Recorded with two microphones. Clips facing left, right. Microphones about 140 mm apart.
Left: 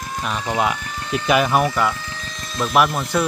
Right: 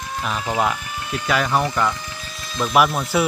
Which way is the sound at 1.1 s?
15° left (ahead or behind).